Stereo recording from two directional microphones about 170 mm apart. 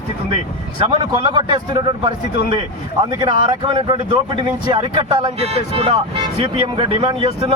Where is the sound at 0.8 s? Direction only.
30° right (ahead or behind).